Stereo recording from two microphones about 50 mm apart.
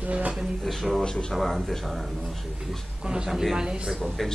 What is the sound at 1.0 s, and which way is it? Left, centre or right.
Speech, centre.